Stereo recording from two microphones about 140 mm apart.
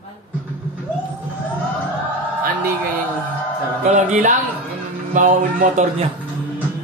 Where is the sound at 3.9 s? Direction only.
60° right (ahead or behind).